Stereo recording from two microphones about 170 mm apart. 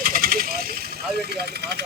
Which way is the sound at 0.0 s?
55° right (ahead or behind).